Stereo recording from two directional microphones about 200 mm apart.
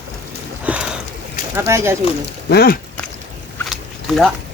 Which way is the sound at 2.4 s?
50° left (ahead or behind).